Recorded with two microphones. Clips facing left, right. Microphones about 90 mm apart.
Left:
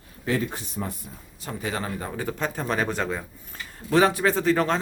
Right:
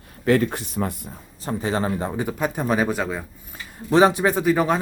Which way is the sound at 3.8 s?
20° right (ahead or behind).